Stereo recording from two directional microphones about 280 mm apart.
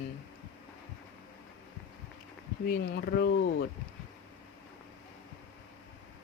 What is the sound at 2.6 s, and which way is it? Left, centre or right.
Speech, left.